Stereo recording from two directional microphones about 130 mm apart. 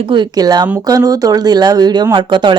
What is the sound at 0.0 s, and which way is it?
Speech, 35° right (ahead or behind).